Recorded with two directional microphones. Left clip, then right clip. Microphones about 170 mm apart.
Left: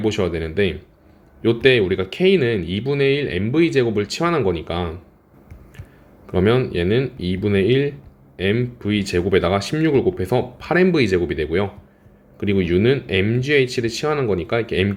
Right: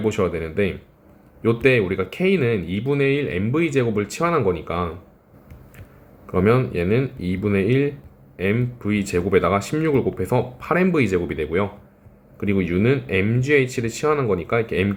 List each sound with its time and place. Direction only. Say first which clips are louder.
0.0 s speech: left 1 dB; 35° left (ahead or behind)
6.3 s speech: left 1 dB; 30° left (ahead or behind)